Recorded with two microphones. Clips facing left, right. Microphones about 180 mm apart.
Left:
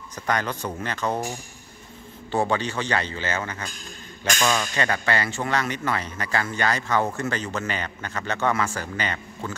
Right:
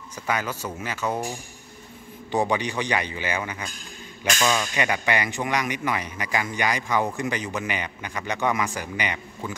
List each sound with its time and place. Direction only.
0.1 s speech: 5° right (ahead or behind)
2.3 s speech: 15° right (ahead or behind)